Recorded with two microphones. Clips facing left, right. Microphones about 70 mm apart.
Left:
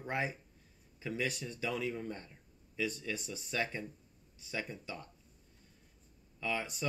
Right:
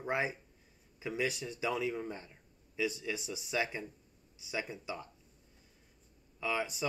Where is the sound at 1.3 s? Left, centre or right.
Centre.